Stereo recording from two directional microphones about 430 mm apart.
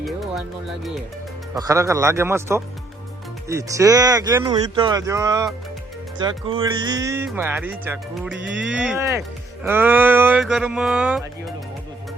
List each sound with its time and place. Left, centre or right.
0.0 s music: centre
1.5 s speech: centre